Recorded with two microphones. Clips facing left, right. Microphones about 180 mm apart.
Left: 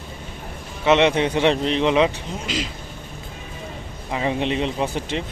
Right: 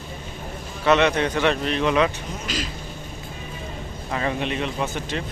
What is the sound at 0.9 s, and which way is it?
A man's voice, 25° left (ahead or behind).